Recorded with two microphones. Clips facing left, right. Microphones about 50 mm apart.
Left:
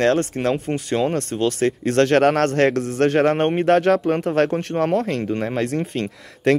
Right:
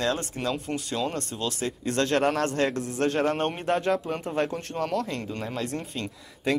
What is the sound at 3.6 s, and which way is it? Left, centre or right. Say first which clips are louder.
Speech: left 9 dB; left.